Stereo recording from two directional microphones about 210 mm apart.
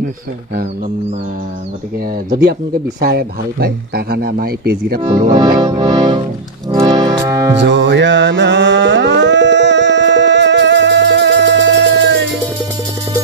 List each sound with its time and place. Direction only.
3.0 s a man's voice: 50° right (ahead or behind)
5.0 s music: 20° right (ahead or behind)
7.6 s carnatic music: 55° right (ahead or behind)